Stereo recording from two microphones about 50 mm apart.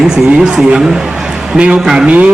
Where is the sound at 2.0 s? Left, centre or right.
Right.